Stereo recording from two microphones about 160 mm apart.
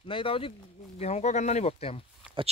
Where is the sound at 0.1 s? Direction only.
35° left (ahead or behind).